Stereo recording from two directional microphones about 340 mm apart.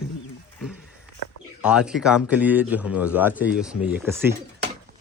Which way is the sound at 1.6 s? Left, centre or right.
Centre.